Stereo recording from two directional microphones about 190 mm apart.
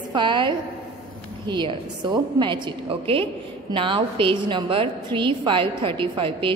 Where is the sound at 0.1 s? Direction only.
25° right (ahead or behind).